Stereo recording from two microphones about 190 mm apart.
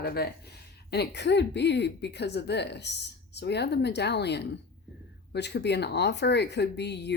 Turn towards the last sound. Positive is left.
turn(degrees=60)  # may be behind; listen again after turning